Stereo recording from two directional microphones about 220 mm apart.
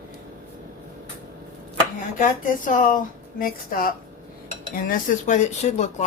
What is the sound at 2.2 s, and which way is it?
Speech, 35° left (ahead or behind).